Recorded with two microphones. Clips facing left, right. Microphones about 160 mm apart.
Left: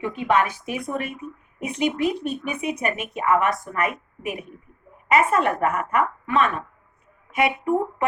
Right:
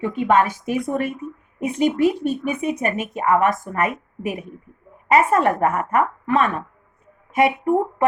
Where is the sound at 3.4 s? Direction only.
45° right (ahead or behind).